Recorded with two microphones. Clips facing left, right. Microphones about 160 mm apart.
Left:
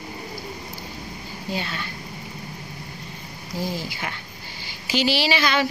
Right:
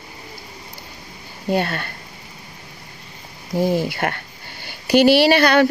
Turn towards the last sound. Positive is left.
turn(degrees=-55)  # may be behind; listen again after turning